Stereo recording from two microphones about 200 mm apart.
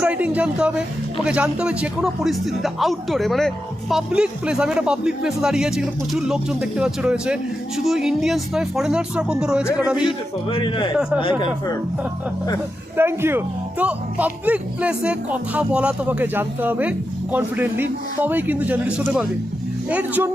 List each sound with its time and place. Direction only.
0.0 s speech: 5° right (ahead or behind)
10.1 s a man's voice: 25° left (ahead or behind)
13.0 s speech: 10° right (ahead or behind)